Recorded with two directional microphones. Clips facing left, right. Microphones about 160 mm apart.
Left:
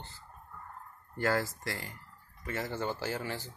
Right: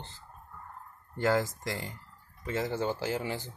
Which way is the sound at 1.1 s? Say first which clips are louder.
Right 3 dB; 20° right (ahead or behind).